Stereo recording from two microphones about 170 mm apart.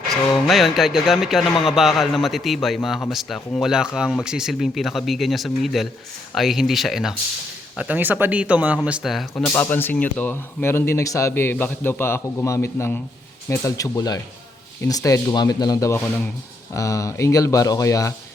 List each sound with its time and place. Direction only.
0.4 s a man's voice: centre (ahead or behind)
9.3 s speech: 10° left (ahead or behind)